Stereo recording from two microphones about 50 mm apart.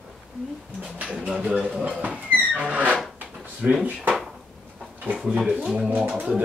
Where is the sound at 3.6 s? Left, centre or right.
Centre.